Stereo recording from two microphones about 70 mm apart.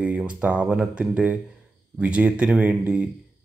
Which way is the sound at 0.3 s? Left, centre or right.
Centre.